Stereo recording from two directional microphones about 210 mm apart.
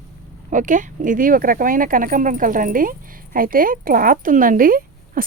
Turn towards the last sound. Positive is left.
turn(degrees=-40)  # may be behind; listen again after turning